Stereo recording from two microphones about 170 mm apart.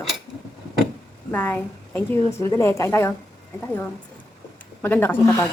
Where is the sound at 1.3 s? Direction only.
10° left (ahead or behind).